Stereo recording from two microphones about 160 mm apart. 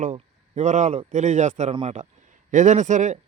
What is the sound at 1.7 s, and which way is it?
Speech, 35° right (ahead or behind).